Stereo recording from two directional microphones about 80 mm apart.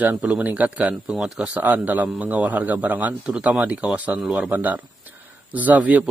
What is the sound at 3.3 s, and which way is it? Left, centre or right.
A man's voice, centre.